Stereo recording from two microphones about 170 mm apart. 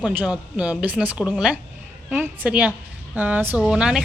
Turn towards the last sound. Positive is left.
turn(degrees=-5)  # may be behind; listen again after turning